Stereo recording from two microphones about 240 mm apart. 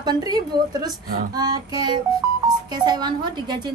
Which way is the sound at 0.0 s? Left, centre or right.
Centre.